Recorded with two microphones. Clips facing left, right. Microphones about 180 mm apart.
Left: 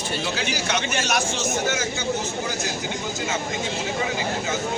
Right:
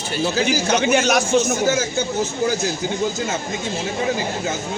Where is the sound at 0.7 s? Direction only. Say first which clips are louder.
Right 8 dB; 60° right (ahead or behind).